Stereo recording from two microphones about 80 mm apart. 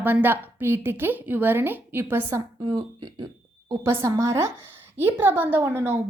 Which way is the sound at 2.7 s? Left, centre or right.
Right.